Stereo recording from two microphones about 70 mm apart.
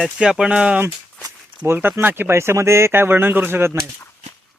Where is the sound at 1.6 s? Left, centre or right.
Right.